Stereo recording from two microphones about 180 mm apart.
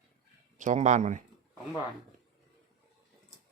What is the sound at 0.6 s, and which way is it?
Speech, 45° right (ahead or behind).